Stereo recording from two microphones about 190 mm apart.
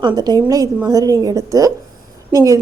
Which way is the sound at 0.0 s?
20° right (ahead or behind).